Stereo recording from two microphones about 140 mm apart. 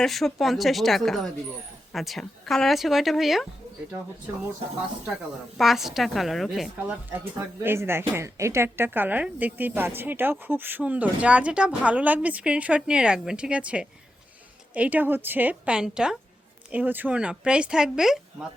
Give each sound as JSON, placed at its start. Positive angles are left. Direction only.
{"t": 0.0, "sound": "speech", "side_deg": 0}
{"t": 5.5, "sound": "speech", "side_deg": 0}
{"t": 6.7, "sound": "speech", "side_deg": -15}